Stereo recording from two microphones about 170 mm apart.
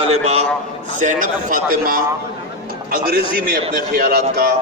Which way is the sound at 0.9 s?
50° right (ahead or behind).